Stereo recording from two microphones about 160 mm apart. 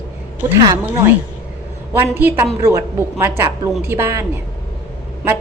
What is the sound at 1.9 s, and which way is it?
A woman's voice, 15° right (ahead or behind).